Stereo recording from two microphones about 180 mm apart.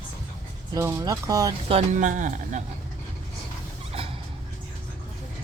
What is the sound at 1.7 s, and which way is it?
Speech, 40° right (ahead or behind).